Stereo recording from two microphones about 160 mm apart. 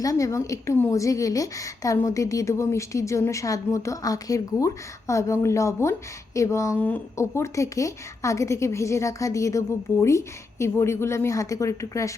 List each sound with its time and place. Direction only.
0.0 s a woman's voice: 20° left (ahead or behind)